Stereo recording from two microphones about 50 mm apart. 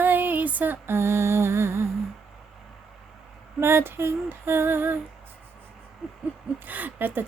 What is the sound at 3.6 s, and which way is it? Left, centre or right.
Female singing, right.